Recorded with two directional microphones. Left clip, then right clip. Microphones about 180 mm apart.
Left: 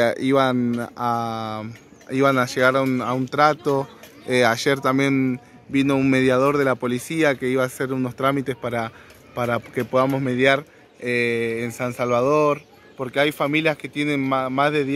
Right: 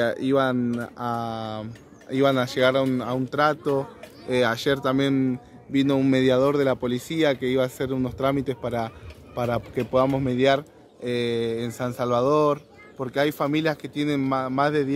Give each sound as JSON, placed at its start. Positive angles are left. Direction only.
{"t": 0.0, "sound": "a man's voice", "side_deg": 40}